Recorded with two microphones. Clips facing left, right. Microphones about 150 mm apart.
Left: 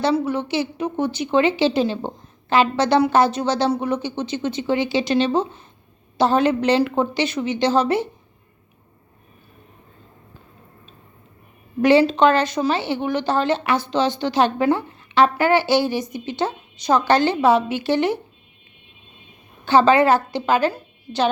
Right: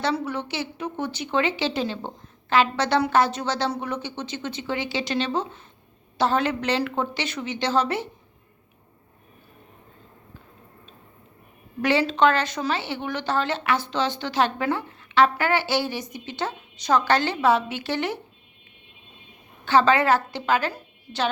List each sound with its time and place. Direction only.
0.0 s speech: 10° left (ahead or behind)
11.8 s speech: 15° left (ahead or behind)
19.6 s speech: 15° left (ahead or behind)